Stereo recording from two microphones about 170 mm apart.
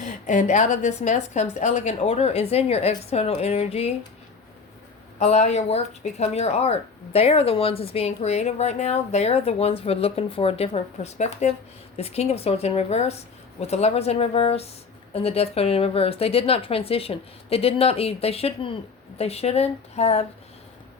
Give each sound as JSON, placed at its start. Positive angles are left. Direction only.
{"t": 0.0, "sound": "speech", "side_deg": 45}
{"t": 5.2, "sound": "speech", "side_deg": 40}